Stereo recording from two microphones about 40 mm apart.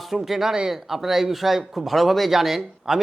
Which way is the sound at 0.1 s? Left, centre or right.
Centre.